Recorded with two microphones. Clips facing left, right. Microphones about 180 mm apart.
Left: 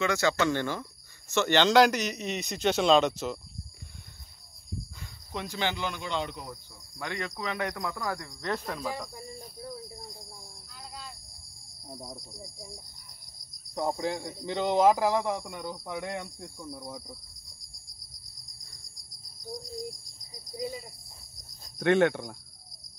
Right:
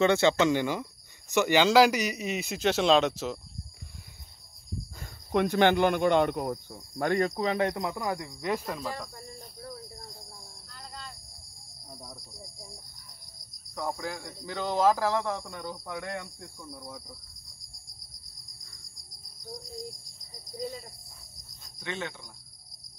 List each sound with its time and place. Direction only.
0.0 s a man's voice: 25° right (ahead or behind); by 3.3 s centre (ahead or behind)
5.3 s speech: 60° right (ahead or behind)
7.4 s speech: 30° right (ahead or behind); by 8.8 s 5° right (ahead or behind)
9.6 s cricket: 15° left (ahead or behind)
11.9 s cricket: 25° left (ahead or behind)
13.7 s speech: 25° left (ahead or behind)
19.5 s cricket: centre (ahead or behind)
21.7 s cricket: 60° left (ahead or behind)